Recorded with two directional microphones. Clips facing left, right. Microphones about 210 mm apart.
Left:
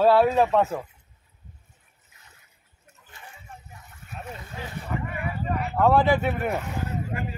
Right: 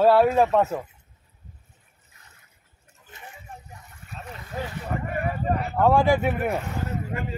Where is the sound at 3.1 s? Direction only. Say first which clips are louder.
Right 3 dB; 20° right (ahead or behind).